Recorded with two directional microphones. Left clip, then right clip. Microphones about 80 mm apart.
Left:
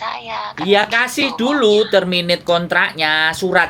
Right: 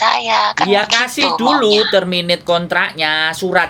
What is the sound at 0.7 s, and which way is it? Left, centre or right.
Speech, centre.